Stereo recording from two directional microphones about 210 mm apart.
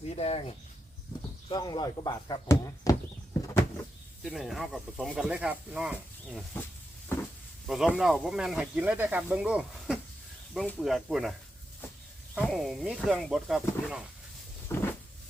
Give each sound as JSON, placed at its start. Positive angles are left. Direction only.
{"t": 0.1, "sound": "speech", "side_deg": 30}
{"t": 4.2, "sound": "speech", "side_deg": 0}
{"t": 7.7, "sound": "speech", "side_deg": 0}
{"t": 14.7, "sound": "a sound", "side_deg": 15}